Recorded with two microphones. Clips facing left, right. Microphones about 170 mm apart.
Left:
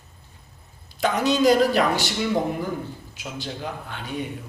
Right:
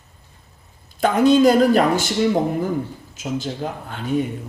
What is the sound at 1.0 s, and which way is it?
Speech, 50° right (ahead or behind).